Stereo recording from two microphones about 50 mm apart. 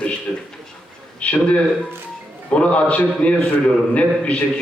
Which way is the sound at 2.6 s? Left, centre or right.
Left.